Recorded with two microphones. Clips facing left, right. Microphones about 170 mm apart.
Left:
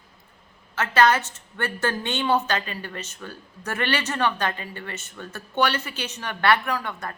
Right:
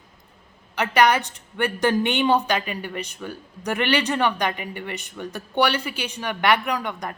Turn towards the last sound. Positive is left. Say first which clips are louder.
# right 2 dB
turn(degrees=-15)  # may be behind; listen again after turning